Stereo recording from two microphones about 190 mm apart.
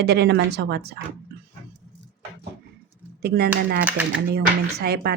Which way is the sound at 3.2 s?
55° right (ahead or behind).